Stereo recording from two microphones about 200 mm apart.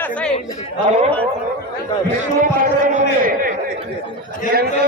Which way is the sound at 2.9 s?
40° right (ahead or behind).